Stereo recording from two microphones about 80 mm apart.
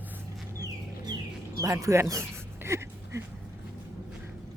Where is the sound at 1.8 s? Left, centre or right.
Right.